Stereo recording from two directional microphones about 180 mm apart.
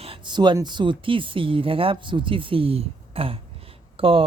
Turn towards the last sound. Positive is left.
turn(degrees=-30)  # may be behind; listen again after turning